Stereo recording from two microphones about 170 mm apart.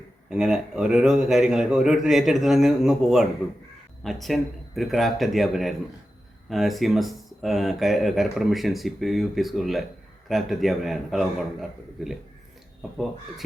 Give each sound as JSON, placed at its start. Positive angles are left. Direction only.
{"t": 0.3, "sound": "speech", "side_deg": -5}